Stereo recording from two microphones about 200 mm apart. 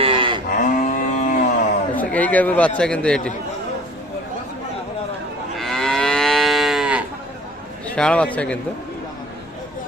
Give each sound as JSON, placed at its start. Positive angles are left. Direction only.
{"t": 0.0, "sound": "moo", "side_deg": -25}
{"t": 0.4, "sound": "cattle", "side_deg": 40}
{"t": 2.0, "sound": "a man's voice", "side_deg": 10}
{"t": 5.5, "sound": "moo", "side_deg": 0}
{"t": 7.9, "sound": "a man's voice", "side_deg": 5}